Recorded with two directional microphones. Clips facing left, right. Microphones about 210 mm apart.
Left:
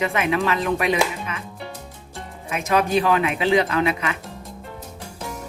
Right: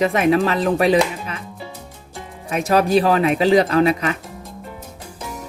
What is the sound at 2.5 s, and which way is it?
Speech, 35° right (ahead or behind).